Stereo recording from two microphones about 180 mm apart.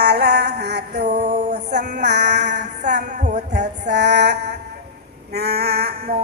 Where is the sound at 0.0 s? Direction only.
65° right (ahead or behind).